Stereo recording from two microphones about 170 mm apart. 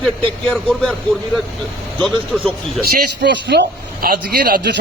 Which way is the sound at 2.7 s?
85° right.